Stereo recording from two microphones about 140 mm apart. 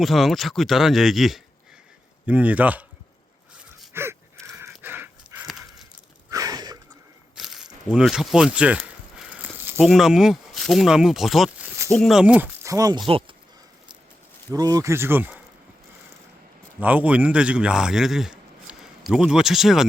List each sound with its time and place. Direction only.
0.0 s speech: centre (ahead or behind)
3.9 s a sound: 15° right (ahead or behind)
4.8 s dog: 15° right (ahead or behind)
6.3 s a sound: 25° right (ahead or behind)
7.3 s a sound: centre (ahead or behind)
9.7 s speech: centre (ahead or behind)
12.2 s speech: 10° right (ahead or behind)
12.6 s speech: 25° right (ahead or behind)
14.5 s speech: 25° right (ahead or behind)
16.8 s speech: 10° right (ahead or behind)